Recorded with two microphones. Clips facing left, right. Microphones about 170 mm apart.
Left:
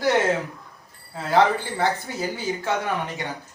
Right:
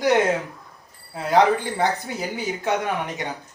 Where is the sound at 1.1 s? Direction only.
15° right (ahead or behind).